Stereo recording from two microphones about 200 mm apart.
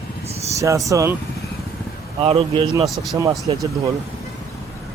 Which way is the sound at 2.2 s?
30° right (ahead or behind).